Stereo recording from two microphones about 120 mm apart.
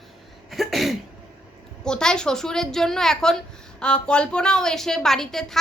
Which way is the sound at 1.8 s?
5° left (ahead or behind).